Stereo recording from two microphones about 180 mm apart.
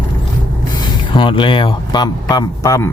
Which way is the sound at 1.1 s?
25° left (ahead or behind).